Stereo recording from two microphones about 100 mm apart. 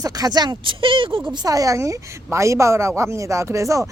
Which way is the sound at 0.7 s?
60° right (ahead or behind).